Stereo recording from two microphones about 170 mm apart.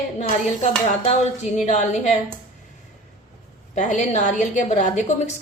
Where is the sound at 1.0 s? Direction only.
40° left (ahead or behind).